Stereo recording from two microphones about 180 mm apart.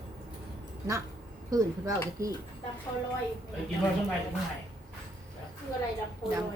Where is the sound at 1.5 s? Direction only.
20° right (ahead or behind).